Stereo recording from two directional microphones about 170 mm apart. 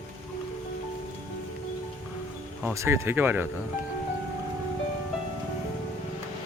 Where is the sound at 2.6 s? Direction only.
15° right (ahead or behind).